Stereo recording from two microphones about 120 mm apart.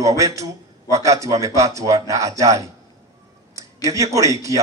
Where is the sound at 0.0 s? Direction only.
25° right (ahead or behind).